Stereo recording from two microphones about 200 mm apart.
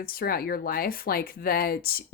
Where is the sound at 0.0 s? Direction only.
50° left (ahead or behind).